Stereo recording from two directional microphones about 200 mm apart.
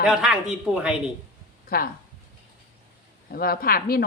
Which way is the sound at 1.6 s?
50° left (ahead or behind).